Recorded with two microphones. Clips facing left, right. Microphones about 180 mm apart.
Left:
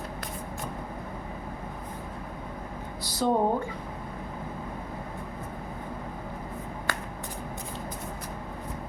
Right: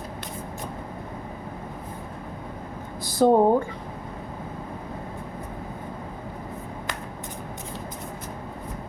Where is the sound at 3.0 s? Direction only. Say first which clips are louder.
Right 8 dB; 50° right (ahead or behind).